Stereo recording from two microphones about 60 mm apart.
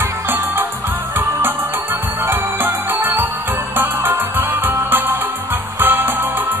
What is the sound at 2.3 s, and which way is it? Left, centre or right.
Music, right.